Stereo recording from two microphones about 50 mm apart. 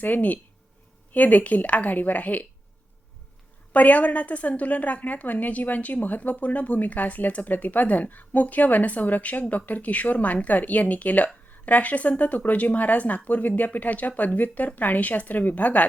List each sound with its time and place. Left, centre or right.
0.0 s a woman's voice: left
3.7 s a woman's voice: left